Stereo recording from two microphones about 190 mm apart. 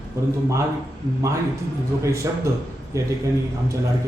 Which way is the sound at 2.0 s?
15° right (ahead or behind).